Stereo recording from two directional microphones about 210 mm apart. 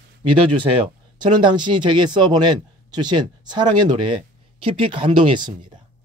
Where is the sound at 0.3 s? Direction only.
25° right (ahead or behind).